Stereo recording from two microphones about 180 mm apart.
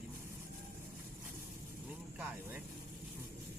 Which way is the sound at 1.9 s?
10° right (ahead or behind).